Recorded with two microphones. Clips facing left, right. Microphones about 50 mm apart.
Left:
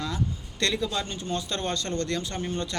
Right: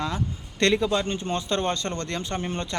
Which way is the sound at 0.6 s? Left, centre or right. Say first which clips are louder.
Right 6 dB; right.